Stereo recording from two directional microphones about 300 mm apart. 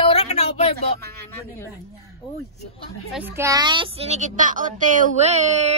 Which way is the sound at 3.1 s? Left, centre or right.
Centre.